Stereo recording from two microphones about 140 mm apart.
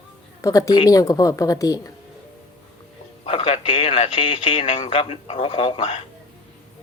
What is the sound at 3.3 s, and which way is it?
Speech, 45° left (ahead or behind).